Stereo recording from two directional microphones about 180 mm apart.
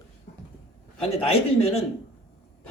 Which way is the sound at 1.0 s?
35° left (ahead or behind).